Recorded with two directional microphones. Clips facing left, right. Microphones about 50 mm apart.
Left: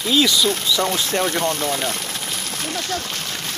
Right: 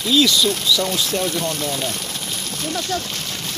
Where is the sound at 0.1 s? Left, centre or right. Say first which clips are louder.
Right 1 dB; centre; by 1.9 s left.